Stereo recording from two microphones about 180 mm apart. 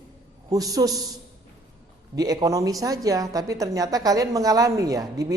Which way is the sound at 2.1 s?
20° right (ahead or behind).